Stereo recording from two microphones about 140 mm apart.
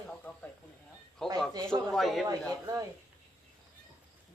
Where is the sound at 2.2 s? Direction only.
25° right (ahead or behind).